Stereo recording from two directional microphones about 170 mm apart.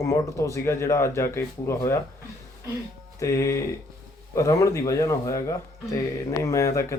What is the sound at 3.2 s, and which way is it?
Speech, 15° left (ahead or behind).